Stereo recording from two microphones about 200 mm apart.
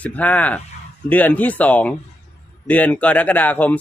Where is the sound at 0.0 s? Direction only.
5° left (ahead or behind).